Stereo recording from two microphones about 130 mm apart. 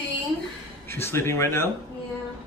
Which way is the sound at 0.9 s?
20° left (ahead or behind).